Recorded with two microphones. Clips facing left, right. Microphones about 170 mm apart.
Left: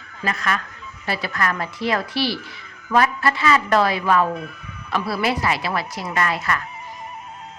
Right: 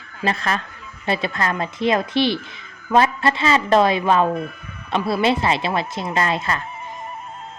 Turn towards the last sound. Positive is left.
turn(degrees=-25)  # may be behind; listen again after turning